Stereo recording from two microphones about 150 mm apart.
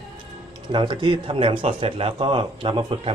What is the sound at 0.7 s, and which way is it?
Speech, 30° right (ahead or behind).